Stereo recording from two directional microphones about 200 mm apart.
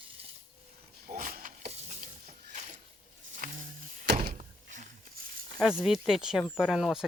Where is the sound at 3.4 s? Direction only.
45° right (ahead or behind).